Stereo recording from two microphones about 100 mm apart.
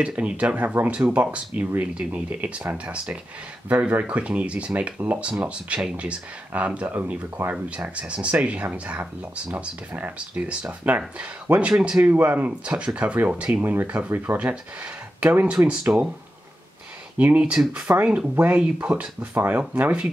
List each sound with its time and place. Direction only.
0.0 s speech: 15° right (ahead or behind)
17.2 s speech: 15° right (ahead or behind)